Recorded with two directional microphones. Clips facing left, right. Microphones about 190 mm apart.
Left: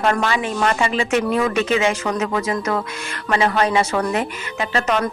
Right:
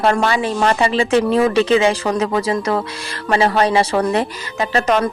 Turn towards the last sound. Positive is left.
turn(degrees=-35)  # may be behind; listen again after turning